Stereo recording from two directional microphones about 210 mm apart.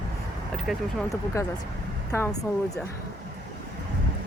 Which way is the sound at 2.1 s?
15° left (ahead or behind).